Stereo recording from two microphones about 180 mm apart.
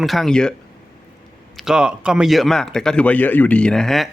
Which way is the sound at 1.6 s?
5° right (ahead or behind).